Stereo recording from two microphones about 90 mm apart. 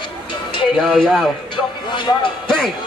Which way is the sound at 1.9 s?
65° left (ahead or behind).